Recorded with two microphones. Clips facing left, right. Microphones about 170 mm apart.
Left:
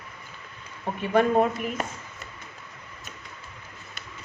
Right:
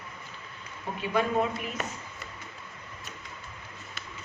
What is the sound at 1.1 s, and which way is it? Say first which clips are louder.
Speech: left 6 dB; 50° left (ahead or behind).